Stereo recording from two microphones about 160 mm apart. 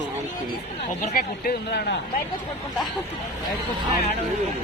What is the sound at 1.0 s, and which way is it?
Speech, 65° left (ahead or behind).